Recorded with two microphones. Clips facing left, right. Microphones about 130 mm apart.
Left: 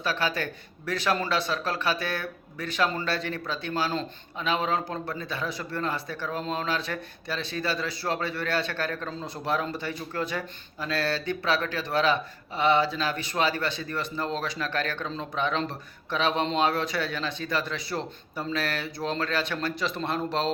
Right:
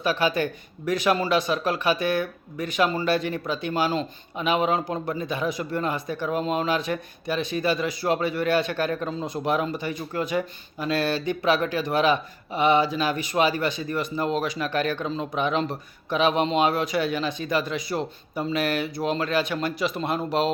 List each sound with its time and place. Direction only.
0.0 s speech: 15° right (ahead or behind)